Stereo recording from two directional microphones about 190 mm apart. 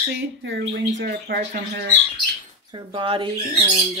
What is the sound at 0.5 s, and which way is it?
Speech, 60° right (ahead or behind).